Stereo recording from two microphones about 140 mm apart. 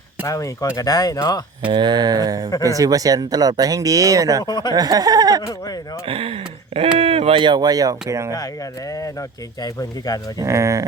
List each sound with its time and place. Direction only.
0.3 s speech: 20° left (ahead or behind)
1.6 s speech: 35° right (ahead or behind)
4.4 s speech: 30° left (ahead or behind)
4.7 s speech: 25° right (ahead or behind)
6.1 s speech: 40° right (ahead or behind); by 8.4 s 20° right (ahead or behind)
9.6 s speech: 25° left (ahead or behind)
10.3 s speech: 20° right (ahead or behind)